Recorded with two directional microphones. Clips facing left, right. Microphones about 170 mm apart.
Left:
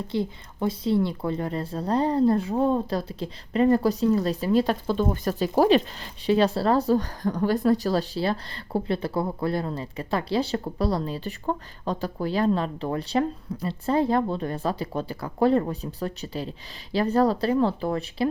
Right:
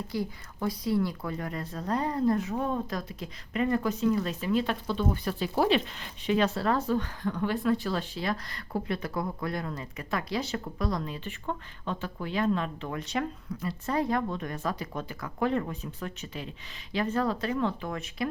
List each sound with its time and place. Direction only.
0.1 s a woman's voice: 25° left (ahead or behind)